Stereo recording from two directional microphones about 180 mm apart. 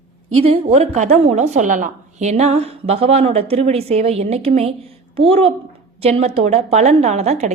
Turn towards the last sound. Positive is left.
turn(degrees=-40)  # may be behind; listen again after turning